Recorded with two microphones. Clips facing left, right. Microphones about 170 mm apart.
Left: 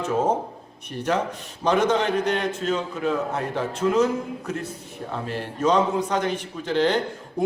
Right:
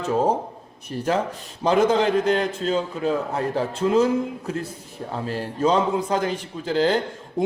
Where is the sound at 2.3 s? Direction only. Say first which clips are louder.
Right 2 dB; 30° right (ahead or behind).